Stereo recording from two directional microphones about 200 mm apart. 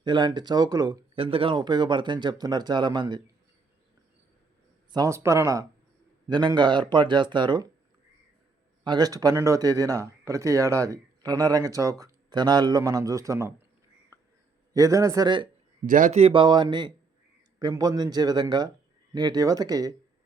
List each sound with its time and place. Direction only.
0.0 s speech: 20° right (ahead or behind)
4.9 s speech: 15° right (ahead or behind)
8.8 s speech: 20° right (ahead or behind)
14.1 s a sound: 15° right (ahead or behind)
14.7 s speech: 15° right (ahead or behind)
15.9 s speech: 40° right (ahead or behind); by 19.9 s 20° right (ahead or behind)